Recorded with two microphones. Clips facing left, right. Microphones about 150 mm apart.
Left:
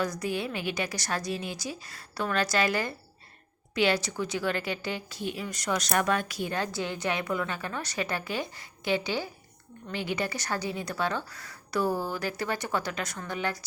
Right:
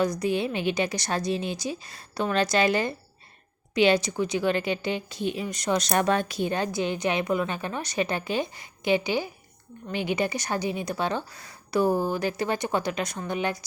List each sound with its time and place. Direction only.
0.0 s a woman's voice: 20° right (ahead or behind)